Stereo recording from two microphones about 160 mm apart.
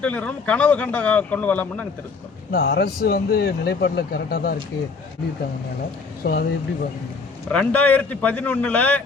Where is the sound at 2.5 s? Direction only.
75° left (ahead or behind).